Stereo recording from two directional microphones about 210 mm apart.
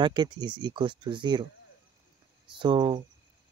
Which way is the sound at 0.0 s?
20° right (ahead or behind).